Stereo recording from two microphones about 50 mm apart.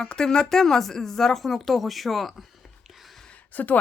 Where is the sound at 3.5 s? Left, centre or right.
Left.